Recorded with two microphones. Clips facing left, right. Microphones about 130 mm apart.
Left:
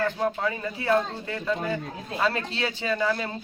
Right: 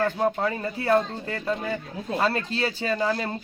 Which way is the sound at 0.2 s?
35° right (ahead or behind).